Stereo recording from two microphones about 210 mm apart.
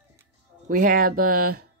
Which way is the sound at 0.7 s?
40° right (ahead or behind).